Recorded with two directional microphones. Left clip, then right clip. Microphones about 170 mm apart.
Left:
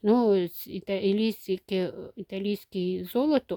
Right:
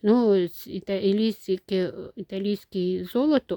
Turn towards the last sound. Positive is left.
turn(degrees=-15)  # may be behind; listen again after turning